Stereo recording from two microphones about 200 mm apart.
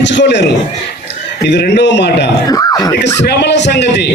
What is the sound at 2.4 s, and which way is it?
Speech, 20° left (ahead or behind).